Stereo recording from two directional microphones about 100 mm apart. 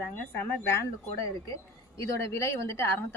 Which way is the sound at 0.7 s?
30° left (ahead or behind).